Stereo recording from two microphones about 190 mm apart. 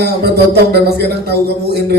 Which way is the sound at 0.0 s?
55° right (ahead or behind).